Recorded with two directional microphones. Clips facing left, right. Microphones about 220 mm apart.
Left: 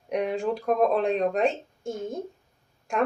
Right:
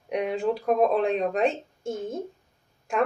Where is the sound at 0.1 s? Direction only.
Centre (ahead or behind).